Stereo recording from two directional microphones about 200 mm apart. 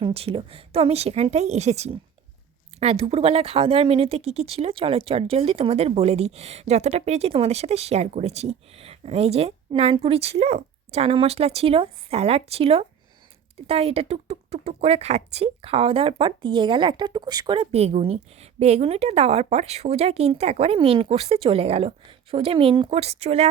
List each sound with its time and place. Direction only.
0.0 s speech: 30° right (ahead or behind)